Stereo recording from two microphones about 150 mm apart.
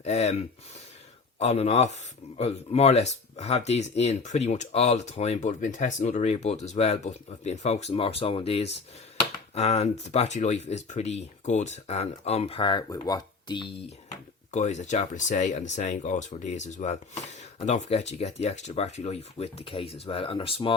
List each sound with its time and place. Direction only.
0.0 s speech: 45° left (ahead or behind); by 13.7 s 30° left (ahead or behind)
14.5 s speech: 50° left (ahead or behind)